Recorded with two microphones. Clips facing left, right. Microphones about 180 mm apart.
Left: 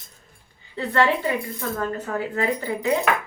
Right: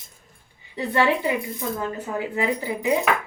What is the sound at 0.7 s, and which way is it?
Speech, 15° right (ahead or behind).